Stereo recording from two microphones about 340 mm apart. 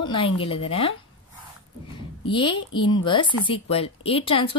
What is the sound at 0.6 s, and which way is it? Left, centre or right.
Speech, centre.